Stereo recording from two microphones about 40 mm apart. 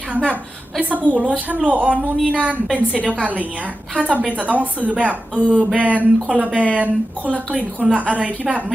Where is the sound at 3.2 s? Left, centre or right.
Right.